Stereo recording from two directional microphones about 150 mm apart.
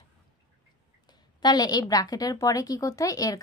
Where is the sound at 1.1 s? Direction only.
30° left (ahead or behind).